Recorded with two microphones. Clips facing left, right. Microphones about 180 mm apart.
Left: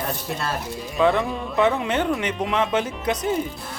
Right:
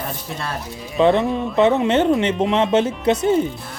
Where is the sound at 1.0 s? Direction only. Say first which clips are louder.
Right 5 dB; 25° right (ahead or behind).